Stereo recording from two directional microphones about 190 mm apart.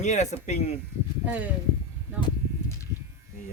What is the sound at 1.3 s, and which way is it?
Speech, 10° right (ahead or behind).